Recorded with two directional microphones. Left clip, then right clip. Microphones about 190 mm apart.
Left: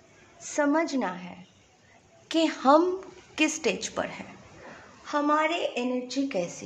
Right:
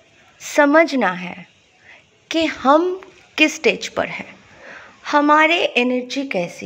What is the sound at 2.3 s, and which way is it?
A woman's voice, 25° right (ahead or behind).